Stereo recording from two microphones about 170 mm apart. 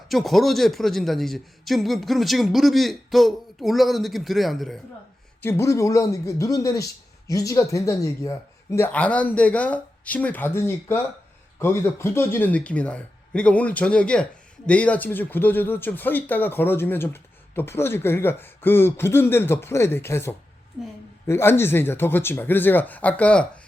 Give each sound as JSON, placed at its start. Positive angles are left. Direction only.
{"t": 0.1, "sound": "a man's voice", "side_deg": 0}
{"t": 5.4, "sound": "speech", "side_deg": 15}